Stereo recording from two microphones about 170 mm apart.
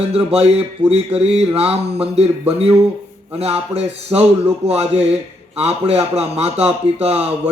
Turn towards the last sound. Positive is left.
turn(degrees=-35)  # may be behind; listen again after turning